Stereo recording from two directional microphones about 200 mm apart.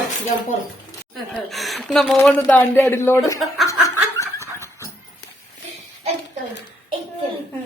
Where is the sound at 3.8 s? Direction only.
15° left (ahead or behind).